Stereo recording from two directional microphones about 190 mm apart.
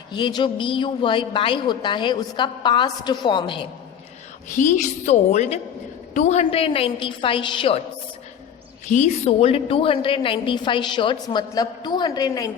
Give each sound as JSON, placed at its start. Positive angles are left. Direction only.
{"t": 0.1, "sound": "a woman's voice", "side_deg": 25}
{"t": 4.5, "sound": "a woman's voice", "side_deg": 40}
{"t": 8.9, "sound": "a woman's voice", "side_deg": 35}